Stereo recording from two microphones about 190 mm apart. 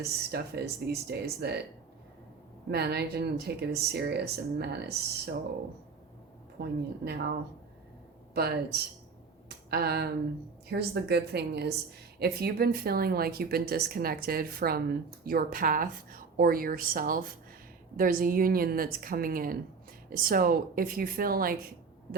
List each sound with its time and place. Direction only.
0.0 s speech: 55° right (ahead or behind)
2.6 s speech: 60° right (ahead or behind)
6.6 s speech: 55° right (ahead or behind)
8.4 s speech: 55° right (ahead or behind)